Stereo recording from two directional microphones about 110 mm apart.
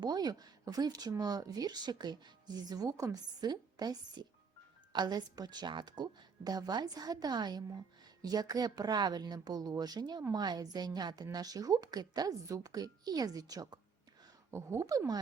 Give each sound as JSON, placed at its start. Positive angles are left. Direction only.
{"t": 0.0, "sound": "speech", "side_deg": -35}